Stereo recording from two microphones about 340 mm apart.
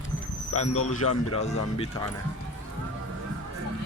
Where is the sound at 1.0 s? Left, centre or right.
Left.